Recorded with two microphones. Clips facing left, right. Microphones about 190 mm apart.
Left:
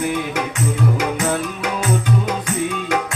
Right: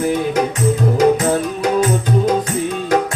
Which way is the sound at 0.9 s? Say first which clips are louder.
Right 7 dB; 35° right (ahead or behind).